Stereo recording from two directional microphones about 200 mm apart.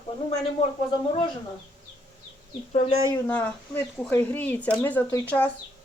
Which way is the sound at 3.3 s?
5° left (ahead or behind).